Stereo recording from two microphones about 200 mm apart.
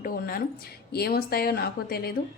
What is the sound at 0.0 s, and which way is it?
A woman's voice, 45° left (ahead or behind).